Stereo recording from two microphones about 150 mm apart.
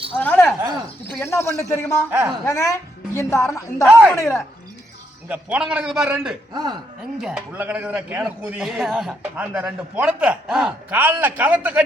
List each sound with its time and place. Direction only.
0.2 s a woman's voice: 10° left (ahead or behind)
2.0 s a man's voice: 10° right (ahead or behind)
2.4 s a woman's voice: 20° left (ahead or behind)
3.8 s a man's voice: 5° right (ahead or behind)
4.1 s a woman's voice: 20° left (ahead or behind)
5.3 s a man's voice: 10° right (ahead or behind)
6.5 s speech: 25° right (ahead or behind)
7.2 s a man's voice: 10° right (ahead or behind)
9.3 s a man's voice: 10° right (ahead or behind)